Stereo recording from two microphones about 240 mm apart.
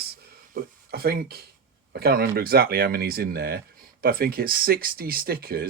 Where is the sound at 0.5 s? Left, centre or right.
Right.